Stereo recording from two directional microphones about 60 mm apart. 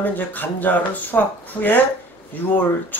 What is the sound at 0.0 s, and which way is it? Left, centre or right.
Speech, left.